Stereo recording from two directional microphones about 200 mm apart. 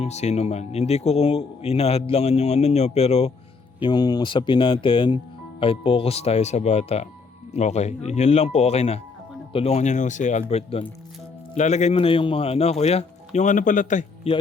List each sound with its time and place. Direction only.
0.0 s speech: 35° left (ahead or behind)
3.8 s speech: 20° left (ahead or behind); by 14.0 s 40° left (ahead or behind)
14.3 s speech: 30° left (ahead or behind)